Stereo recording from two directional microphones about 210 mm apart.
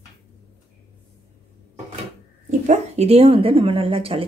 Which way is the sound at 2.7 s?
30° right (ahead or behind).